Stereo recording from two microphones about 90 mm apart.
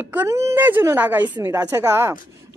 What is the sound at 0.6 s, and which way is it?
Speech, 20° right (ahead or behind).